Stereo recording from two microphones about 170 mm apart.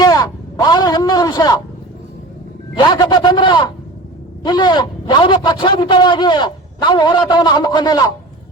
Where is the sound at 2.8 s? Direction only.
25° left (ahead or behind).